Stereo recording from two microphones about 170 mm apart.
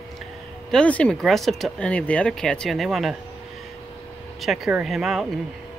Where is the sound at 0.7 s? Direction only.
5° left (ahead or behind).